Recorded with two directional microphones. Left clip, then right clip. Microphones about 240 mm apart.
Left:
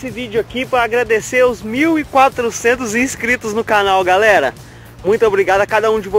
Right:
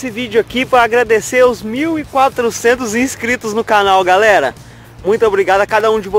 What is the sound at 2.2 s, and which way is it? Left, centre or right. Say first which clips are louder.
Speech: right 2 dB; centre.